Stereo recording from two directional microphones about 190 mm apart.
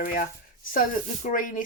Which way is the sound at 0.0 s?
50° left (ahead or behind).